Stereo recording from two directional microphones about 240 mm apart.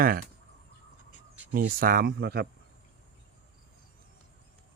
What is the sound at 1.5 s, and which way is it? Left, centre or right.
Speech, right.